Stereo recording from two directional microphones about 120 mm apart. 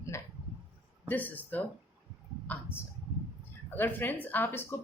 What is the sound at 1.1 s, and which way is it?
A woman's voice, 15° left (ahead or behind).